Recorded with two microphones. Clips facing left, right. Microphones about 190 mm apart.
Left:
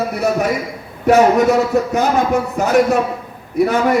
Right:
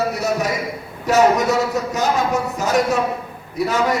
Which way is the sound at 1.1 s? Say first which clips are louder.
Left 4 dB; 55° left (ahead or behind).